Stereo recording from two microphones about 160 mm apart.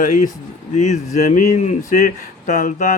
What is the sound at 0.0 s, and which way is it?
Speech, 55° left (ahead or behind).